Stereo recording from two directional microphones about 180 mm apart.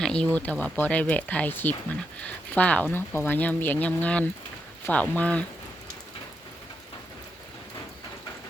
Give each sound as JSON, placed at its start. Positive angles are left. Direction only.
{"t": 0.0, "sound": "speech", "side_deg": 5}